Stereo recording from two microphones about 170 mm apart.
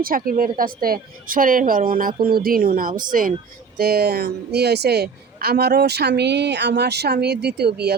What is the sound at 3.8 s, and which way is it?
A man's voice, 65° right (ahead or behind).